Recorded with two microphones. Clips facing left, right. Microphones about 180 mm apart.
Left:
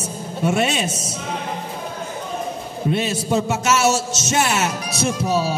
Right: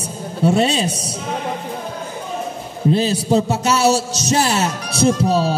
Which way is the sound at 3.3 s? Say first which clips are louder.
Right 2 dB; 35° right (ahead or behind).